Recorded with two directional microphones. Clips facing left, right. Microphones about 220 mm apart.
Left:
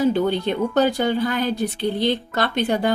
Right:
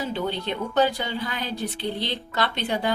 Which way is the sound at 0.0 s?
50° left (ahead or behind).